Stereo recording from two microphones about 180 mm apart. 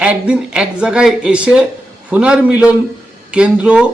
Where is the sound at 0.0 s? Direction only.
5° right (ahead or behind).